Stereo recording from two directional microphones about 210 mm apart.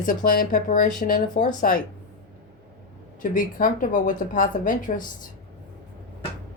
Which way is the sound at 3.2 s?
40° left (ahead or behind).